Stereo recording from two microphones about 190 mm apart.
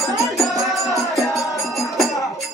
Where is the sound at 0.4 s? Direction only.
Centre (ahead or behind).